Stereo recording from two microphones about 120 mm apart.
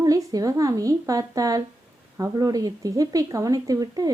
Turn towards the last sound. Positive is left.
turn(degrees=-30)  # may be behind; listen again after turning